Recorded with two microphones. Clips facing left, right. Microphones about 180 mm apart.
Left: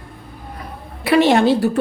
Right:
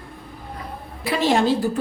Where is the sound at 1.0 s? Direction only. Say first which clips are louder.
Left 6 dB; 65° left (ahead or behind).